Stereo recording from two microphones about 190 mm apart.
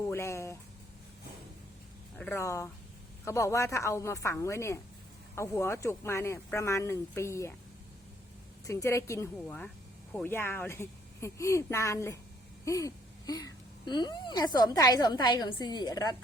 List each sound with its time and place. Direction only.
0.1 s a sound: 15° left (ahead or behind)
2.1 s speech: 10° left (ahead or behind)
8.6 s speech: 15° left (ahead or behind)